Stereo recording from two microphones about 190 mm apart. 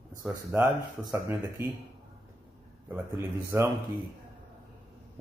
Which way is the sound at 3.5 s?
15° right (ahead or behind).